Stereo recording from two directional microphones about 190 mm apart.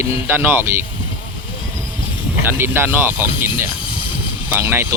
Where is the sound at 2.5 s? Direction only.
10° right (ahead or behind).